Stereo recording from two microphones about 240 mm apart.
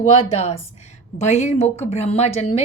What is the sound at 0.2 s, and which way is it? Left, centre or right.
A woman's voice, left.